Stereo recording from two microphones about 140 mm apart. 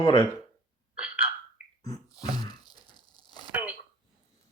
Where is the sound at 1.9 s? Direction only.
30° left (ahead or behind).